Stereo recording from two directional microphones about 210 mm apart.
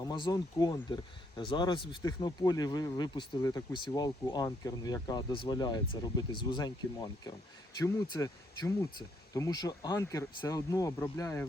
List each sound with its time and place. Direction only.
0.0 s speech: 20° left (ahead or behind)